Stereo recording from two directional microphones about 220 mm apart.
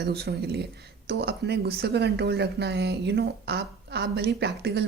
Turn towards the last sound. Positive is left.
turn(degrees=-50)  # may be behind; listen again after turning